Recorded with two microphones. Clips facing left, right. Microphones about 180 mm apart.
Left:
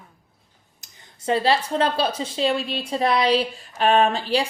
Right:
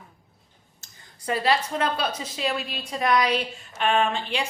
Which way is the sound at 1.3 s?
25° left (ahead or behind).